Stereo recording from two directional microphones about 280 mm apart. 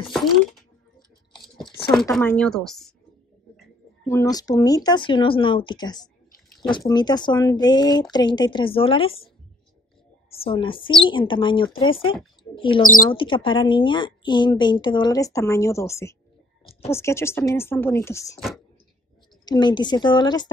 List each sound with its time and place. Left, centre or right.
0.0 s speech: centre
2.1 s speech: centre
4.1 s speech: centre
10.3 s speech: centre
19.4 s speech: centre